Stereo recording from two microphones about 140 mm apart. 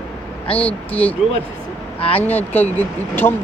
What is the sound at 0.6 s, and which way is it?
Speech, 10° left (ahead or behind).